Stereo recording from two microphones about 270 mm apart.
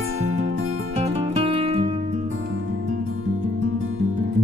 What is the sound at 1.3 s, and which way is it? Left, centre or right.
Music, right.